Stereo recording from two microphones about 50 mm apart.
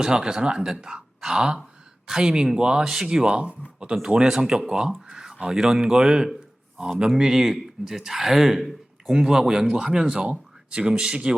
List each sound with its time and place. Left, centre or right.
0.0 s speech: centre